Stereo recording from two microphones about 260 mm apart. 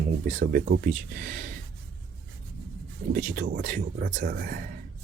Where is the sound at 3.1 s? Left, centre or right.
Right.